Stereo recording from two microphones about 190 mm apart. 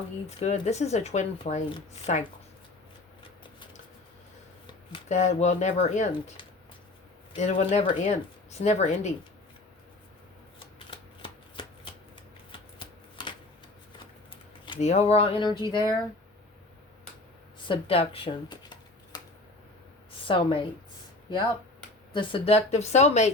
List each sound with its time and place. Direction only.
0.3 s speech: 35° left (ahead or behind)
5.0 s speech: 35° left (ahead or behind)
10.8 s shuffling cards: 25° left (ahead or behind)
14.6 s speech: 30° left (ahead or behind)
17.7 s shuffling cards: 30° left (ahead or behind)
20.2 s speech: 25° left (ahead or behind)
22.1 s speech: 25° left (ahead or behind)